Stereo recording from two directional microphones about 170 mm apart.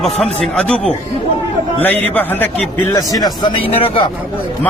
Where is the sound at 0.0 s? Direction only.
5° left (ahead or behind); by 4.1 s 30° left (ahead or behind).